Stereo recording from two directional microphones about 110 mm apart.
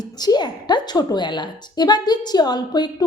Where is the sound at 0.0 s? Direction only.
40° left (ahead or behind).